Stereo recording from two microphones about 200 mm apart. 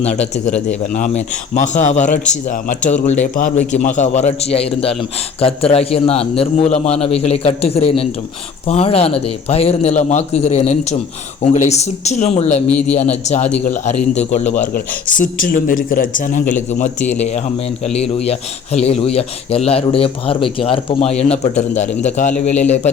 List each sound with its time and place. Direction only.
0.0 s a man's voice: 35° left (ahead or behind)